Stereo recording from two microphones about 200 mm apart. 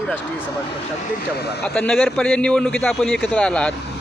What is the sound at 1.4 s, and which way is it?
Speech, 55° left (ahead or behind).